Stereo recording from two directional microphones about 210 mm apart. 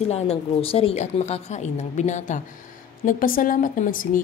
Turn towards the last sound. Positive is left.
turn(degrees=40)  # may be behind; listen again after turning